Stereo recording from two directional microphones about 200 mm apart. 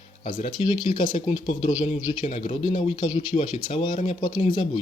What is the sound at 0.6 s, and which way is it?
Speech, 40° left (ahead or behind).